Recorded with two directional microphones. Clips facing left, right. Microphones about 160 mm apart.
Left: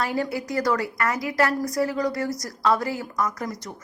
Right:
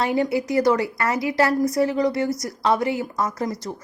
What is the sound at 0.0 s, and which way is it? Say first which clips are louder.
A woman's voice: right 5 dB; 25° right (ahead or behind).